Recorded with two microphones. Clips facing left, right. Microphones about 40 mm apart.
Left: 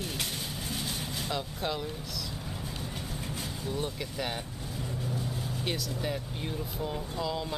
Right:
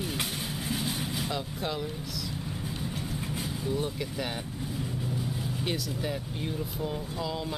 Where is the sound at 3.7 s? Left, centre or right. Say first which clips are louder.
Right 3 dB; centre.